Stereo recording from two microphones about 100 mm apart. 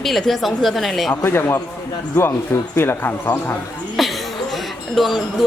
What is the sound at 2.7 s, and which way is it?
Speech, 25° left (ahead or behind).